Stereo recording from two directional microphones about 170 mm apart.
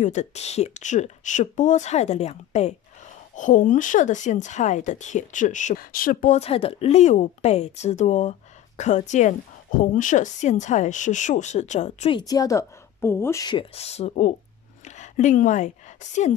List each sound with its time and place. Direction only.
0.0 s speech: 45° left (ahead or behind)
12.1 s a woman's voice: 25° left (ahead or behind); by 16.3 s 45° left (ahead or behind)